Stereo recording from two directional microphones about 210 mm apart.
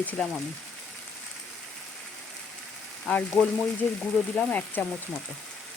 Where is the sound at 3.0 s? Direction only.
5° left (ahead or behind).